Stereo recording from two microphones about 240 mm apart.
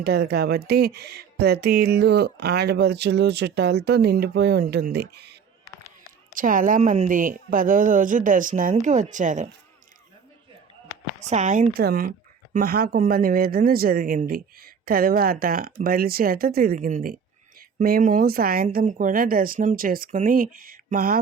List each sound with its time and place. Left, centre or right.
0.0 s speech: right
11.2 s speech: right